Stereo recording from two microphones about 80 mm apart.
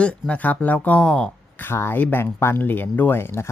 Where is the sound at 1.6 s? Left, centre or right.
Left.